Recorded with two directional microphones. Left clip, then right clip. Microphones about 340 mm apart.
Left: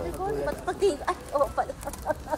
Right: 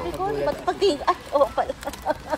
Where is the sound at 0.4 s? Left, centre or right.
Right.